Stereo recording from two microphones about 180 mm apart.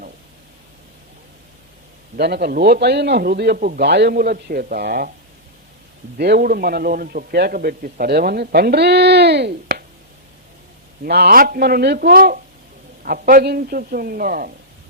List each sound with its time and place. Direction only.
2.1 s a man's voice: 60° right (ahead or behind)
6.1 s a man's voice: 65° right (ahead or behind)
11.0 s a man's voice: 60° right (ahead or behind)